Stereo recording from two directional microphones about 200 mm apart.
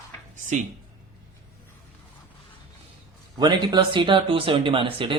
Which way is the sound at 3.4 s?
20° right (ahead or behind).